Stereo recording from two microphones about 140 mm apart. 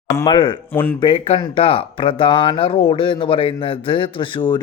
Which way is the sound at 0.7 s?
15° left (ahead or behind).